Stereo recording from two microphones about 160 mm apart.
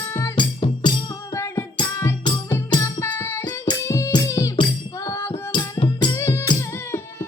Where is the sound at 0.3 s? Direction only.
30° left (ahead or behind).